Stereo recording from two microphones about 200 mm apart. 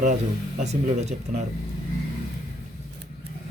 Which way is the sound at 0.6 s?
35° right (ahead or behind).